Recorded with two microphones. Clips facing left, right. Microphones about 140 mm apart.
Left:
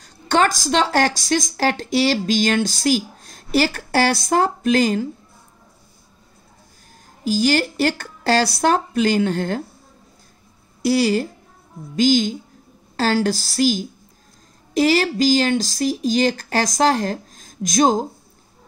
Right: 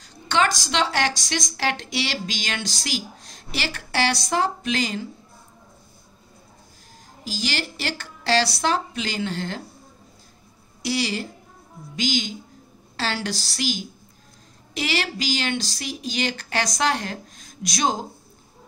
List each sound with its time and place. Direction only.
0.0 s a woman's voice: 45° left (ahead or behind)
7.2 s a woman's voice: 50° left (ahead or behind)
10.8 s a woman's voice: 45° left (ahead or behind)